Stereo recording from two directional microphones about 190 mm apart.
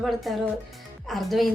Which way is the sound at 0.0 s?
Centre (ahead or behind).